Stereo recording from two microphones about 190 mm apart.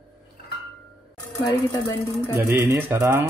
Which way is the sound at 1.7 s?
15° left (ahead or behind).